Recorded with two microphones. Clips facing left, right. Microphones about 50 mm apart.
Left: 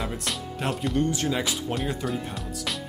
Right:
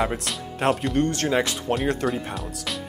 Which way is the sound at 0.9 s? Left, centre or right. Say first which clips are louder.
Right 2 dB; right.